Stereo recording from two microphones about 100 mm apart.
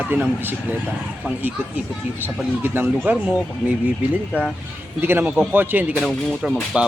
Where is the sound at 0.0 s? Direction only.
20° right (ahead or behind).